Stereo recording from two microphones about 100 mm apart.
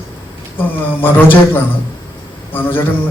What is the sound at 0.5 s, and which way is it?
A man's voice, 20° left (ahead or behind).